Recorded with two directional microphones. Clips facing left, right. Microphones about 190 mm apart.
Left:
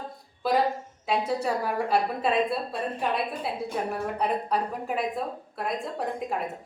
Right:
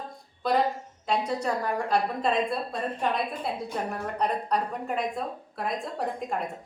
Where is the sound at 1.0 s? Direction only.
5° left (ahead or behind).